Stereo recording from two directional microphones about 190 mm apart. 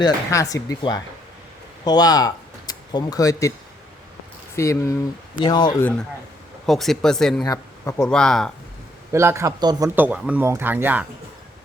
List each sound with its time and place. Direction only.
0.0 s speech: 20° left (ahead or behind)
4.5 s speech: 15° left (ahead or behind)
6.7 s speech: centre (ahead or behind)
7.4 s speech: 20° left (ahead or behind)
8.0 s speech: 5° left (ahead or behind)
9.1 s speech: 15° right (ahead or behind)
9.9 s speech: 10° right (ahead or behind)